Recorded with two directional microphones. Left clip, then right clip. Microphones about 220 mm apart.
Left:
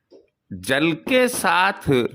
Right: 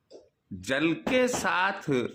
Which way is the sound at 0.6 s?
40° left (ahead or behind).